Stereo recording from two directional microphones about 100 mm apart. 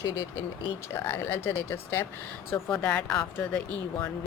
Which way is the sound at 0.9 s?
25° left (ahead or behind).